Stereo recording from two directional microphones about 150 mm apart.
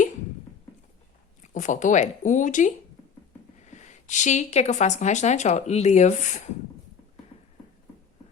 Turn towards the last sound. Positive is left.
turn(degrees=55)  # may be behind; listen again after turning